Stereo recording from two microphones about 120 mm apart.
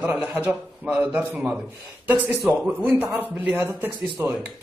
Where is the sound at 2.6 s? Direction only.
10° right (ahead or behind).